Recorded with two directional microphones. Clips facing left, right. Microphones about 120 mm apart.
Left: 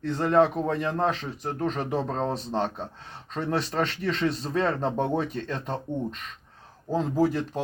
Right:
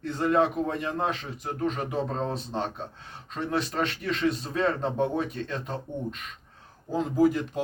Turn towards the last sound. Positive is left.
turn(degrees=35)  # may be behind; listen again after turning